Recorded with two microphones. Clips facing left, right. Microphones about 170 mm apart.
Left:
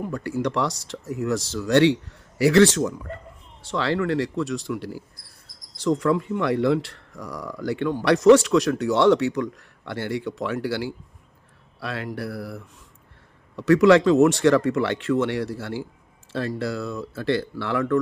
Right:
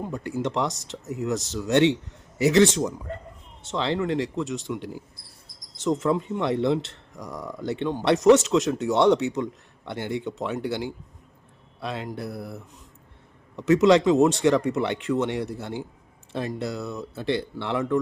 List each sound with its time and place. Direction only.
0.0 s speech: 20° right (ahead or behind)